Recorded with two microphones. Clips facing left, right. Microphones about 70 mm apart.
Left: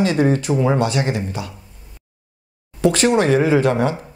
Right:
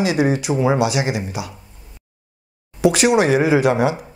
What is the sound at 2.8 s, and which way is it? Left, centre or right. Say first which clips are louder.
A man's voice: right 1 dB; centre.